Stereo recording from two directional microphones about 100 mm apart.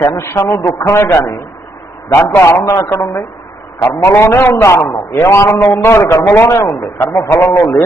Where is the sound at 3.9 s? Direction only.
25° left (ahead or behind).